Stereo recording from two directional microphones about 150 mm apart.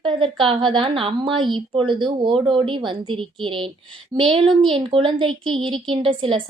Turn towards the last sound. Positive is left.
turn(degrees=-35)  # may be behind; listen again after turning